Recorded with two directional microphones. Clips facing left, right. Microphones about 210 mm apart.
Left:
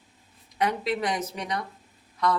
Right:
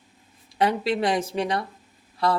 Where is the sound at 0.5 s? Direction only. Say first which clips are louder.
Right 4 dB; 30° right (ahead or behind).